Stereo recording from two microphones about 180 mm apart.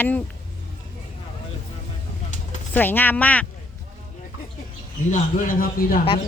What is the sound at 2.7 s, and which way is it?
Speech, 10° left (ahead or behind).